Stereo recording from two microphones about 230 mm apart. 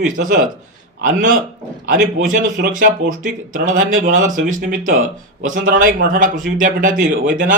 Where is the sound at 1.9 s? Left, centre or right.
Right.